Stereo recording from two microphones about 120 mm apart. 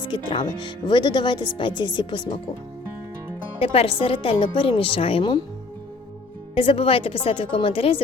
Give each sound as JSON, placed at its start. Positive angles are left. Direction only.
{"t": 0.0, "sound": "speech", "side_deg": 40}
{"t": 3.6, "sound": "a woman's voice", "side_deg": 55}
{"t": 6.5, "sound": "a woman's voice", "side_deg": 50}